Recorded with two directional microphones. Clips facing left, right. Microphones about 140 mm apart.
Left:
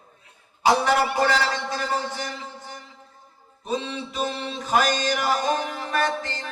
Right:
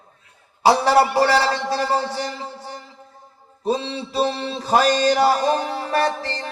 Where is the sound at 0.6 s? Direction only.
35° right (ahead or behind).